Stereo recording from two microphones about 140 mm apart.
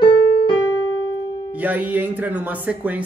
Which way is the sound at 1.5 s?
10° right (ahead or behind).